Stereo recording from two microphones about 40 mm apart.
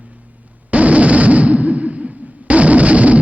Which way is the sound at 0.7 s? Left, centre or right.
Right.